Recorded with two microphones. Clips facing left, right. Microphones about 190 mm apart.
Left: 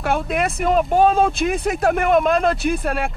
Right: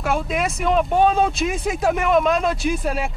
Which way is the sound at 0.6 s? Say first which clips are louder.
Left 1 dB; 45° left (ahead or behind).